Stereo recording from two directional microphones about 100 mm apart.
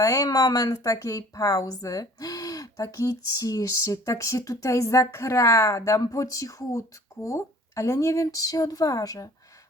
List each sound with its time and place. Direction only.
0.0 s speech: 35° left (ahead or behind)